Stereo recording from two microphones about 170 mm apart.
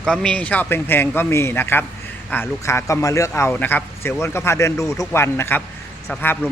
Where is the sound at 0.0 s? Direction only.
5° left (ahead or behind).